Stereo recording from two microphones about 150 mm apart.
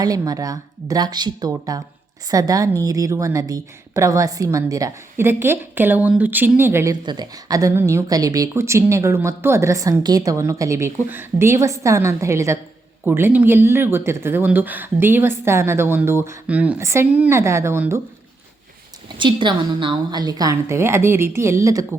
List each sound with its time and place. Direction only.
0.0 s speech: 25° right (ahead or behind)
7.0 s speech: 30° right (ahead or behind)
19.0 s speech: 30° right (ahead or behind)